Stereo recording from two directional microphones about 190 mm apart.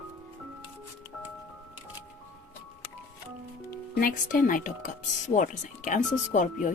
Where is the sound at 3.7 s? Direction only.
50° left (ahead or behind).